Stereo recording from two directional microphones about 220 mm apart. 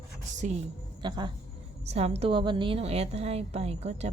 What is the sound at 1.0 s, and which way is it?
A woman's voice, 20° right (ahead or behind).